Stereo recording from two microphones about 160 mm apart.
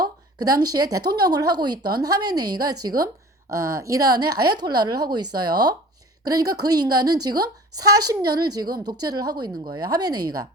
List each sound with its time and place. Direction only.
0.5 s speech: 25° right (ahead or behind)